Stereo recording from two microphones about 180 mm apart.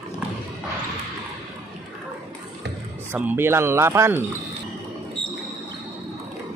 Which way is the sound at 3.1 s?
10° right (ahead or behind).